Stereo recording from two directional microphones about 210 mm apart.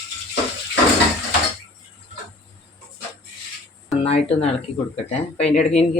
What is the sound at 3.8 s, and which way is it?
Speech, 30° left (ahead or behind).